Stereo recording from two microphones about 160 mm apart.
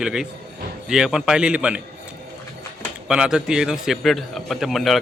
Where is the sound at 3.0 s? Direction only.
5° right (ahead or behind).